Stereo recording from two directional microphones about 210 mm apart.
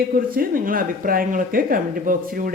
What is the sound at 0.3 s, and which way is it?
Speech, 40° right (ahead or behind).